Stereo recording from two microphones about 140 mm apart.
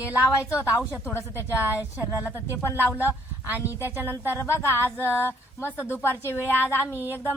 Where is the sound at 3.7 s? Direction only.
15° right (ahead or behind).